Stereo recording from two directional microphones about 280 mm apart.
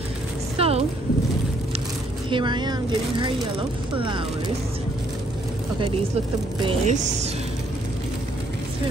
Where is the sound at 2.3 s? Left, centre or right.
Centre.